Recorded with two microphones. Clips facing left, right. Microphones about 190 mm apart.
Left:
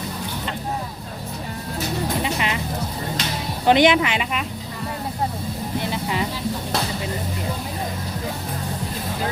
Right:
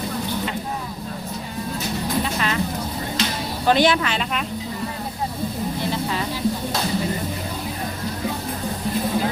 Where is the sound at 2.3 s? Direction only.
15° left (ahead or behind).